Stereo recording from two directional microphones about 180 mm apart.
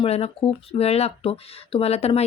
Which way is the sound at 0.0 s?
35° left (ahead or behind).